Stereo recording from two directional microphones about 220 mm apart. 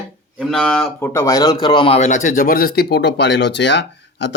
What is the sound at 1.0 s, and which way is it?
Speech, 10° left (ahead or behind).